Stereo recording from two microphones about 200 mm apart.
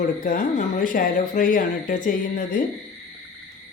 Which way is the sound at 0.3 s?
45° left (ahead or behind).